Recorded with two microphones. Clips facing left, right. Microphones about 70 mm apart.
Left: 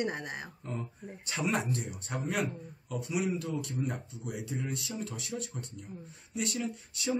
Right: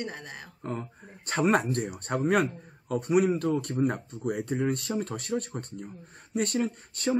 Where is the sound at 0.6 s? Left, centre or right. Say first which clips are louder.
Right 4 dB; right.